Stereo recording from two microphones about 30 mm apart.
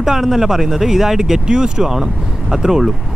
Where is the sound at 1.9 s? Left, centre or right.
Centre.